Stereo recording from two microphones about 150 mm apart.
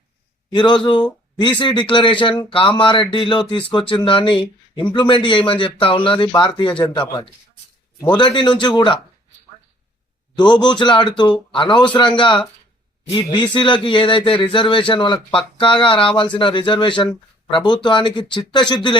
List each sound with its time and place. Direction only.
0.5 s a man's voice: 30° left (ahead or behind)
8.1 s a man's voice: 30° left (ahead or behind)
10.3 s a man's voice: 30° left (ahead or behind)
13.5 s a man's voice: 35° left (ahead or behind)